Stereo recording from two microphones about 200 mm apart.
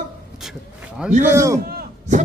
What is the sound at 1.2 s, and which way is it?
Speech, 15° right (ahead or behind).